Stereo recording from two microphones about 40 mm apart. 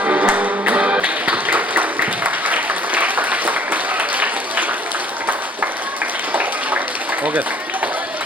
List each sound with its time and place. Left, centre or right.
0.0 s music: right